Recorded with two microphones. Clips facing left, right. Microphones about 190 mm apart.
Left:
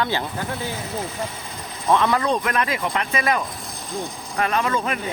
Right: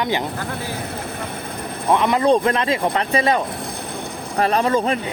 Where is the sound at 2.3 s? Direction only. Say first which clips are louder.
Right 6 dB; 30° right (ahead or behind).